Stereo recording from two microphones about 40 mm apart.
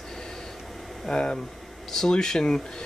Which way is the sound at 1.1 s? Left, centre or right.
Centre.